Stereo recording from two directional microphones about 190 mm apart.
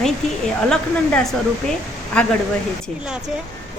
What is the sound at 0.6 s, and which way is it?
A woman's voice, 5° left (ahead or behind).